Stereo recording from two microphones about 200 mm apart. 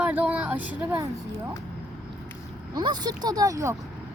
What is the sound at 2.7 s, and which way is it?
Speech, 20° right (ahead or behind).